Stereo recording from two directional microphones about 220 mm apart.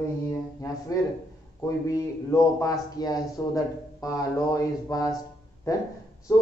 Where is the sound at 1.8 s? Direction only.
15° left (ahead or behind).